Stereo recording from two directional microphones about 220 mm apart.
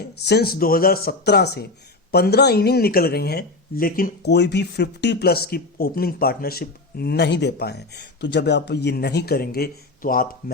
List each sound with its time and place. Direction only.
0.3 s speech: 45° left (ahead or behind)